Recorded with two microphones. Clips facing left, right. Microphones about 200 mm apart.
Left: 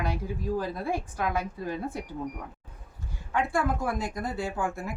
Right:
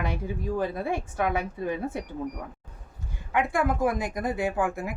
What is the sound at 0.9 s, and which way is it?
A woman's voice, 60° right (ahead or behind).